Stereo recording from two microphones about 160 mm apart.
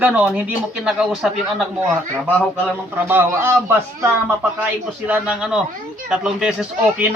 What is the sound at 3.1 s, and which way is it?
Speech, 15° right (ahead or behind).